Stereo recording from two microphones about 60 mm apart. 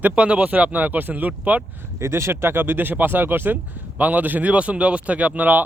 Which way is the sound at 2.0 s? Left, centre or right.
Right.